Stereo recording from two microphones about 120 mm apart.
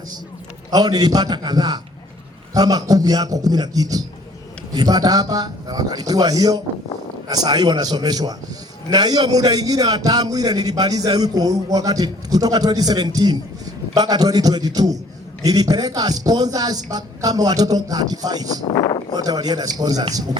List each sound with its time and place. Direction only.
0.7 s a man's voice: 35° right (ahead or behind)
18.7 s a sound: 35° left (ahead or behind)
19.1 s a man's voice: 35° right (ahead or behind)